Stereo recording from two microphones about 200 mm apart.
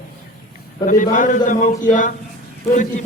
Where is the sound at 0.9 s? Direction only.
40° left (ahead or behind).